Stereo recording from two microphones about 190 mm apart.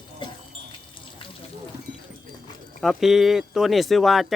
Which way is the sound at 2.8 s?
Centre (ahead or behind).